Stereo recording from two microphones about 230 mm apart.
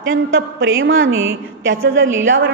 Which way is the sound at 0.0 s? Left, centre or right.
Right.